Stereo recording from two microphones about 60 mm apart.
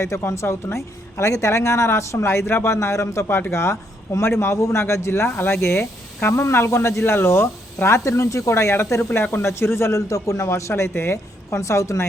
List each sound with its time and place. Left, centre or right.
0.0 s speech: left
3.2 s speech: left